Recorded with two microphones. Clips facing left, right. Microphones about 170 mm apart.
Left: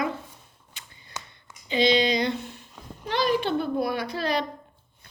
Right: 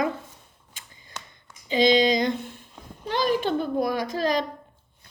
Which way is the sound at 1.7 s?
40° right (ahead or behind).